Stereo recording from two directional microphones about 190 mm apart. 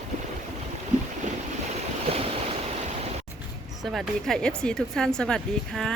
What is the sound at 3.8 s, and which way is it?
Speech, centre (ahead or behind).